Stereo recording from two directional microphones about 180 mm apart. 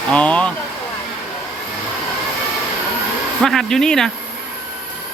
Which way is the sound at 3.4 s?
Centre (ahead or behind).